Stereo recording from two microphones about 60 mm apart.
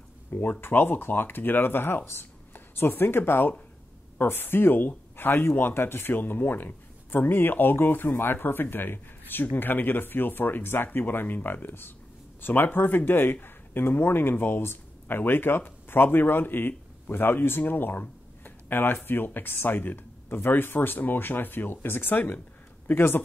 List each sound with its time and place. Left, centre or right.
0.3 s speech: left